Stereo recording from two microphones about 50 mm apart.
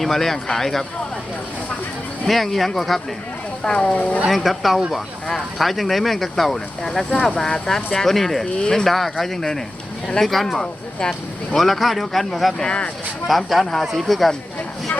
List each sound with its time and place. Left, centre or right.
0.0 s speech: centre
2.2 s speech: centre
3.6 s speech: centre
4.3 s speech: centre
12.6 s speech: left
13.2 s speech: centre